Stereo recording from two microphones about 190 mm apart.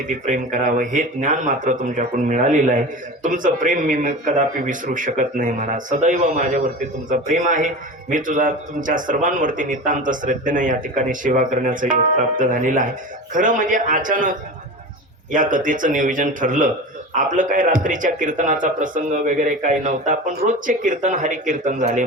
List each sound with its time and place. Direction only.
0.3 s a man's voice: 45° right (ahead or behind)